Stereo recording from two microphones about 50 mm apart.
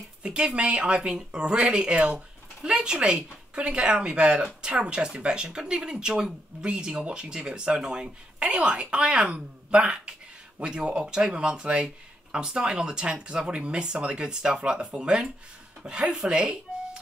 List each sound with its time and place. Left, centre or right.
0.2 s speech: centre